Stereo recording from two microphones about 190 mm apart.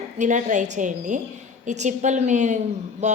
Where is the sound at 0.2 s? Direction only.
40° right (ahead or behind).